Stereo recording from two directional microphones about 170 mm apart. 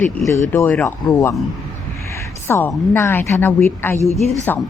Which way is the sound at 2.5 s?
15° left (ahead or behind).